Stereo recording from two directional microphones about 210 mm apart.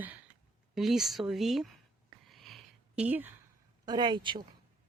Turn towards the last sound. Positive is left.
turn(degrees=-20)  # may be behind; listen again after turning